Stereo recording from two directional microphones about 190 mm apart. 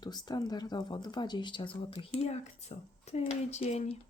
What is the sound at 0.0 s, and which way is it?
Speech, 20° left (ahead or behind).